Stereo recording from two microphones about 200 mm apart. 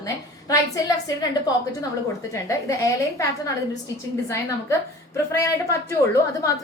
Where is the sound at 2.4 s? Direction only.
15° left (ahead or behind).